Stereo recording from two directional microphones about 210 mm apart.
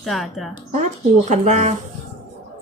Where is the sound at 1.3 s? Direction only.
35° right (ahead or behind).